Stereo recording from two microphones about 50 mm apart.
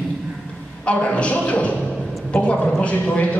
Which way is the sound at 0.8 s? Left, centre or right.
Left.